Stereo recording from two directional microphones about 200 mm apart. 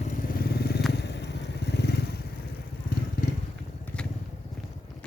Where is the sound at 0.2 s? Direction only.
50° left (ahead or behind).